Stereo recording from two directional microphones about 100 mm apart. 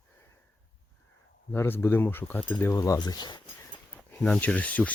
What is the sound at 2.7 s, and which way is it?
Speech, 30° left (ahead or behind).